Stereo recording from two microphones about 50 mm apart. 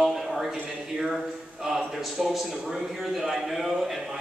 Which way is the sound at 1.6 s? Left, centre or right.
Centre.